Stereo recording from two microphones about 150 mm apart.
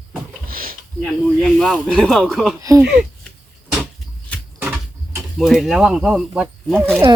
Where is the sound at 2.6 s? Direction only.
20° right (ahead or behind).